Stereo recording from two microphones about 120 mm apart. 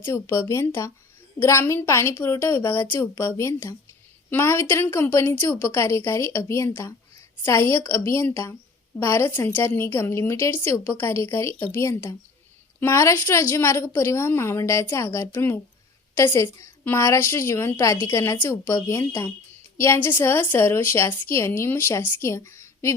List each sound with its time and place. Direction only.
0.0 s a woman's voice: 20° left (ahead or behind)